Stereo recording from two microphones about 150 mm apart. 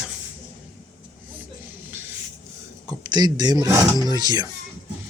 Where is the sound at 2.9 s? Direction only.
30° right (ahead or behind).